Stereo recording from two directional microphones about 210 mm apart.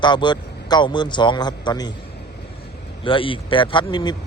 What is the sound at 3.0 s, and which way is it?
A man's voice, 25° left (ahead or behind).